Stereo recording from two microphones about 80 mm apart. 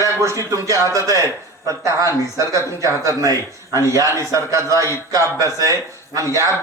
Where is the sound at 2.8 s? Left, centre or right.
Right.